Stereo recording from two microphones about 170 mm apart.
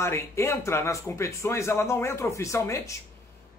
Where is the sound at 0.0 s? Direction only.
15° left (ahead or behind).